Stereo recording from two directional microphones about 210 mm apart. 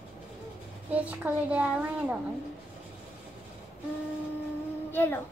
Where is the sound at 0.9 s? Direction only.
5° right (ahead or behind).